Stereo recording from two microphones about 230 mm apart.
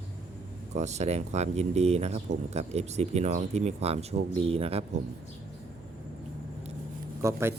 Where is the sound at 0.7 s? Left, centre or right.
Right.